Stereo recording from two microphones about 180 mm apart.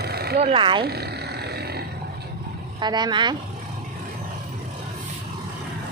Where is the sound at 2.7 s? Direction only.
25° right (ahead or behind).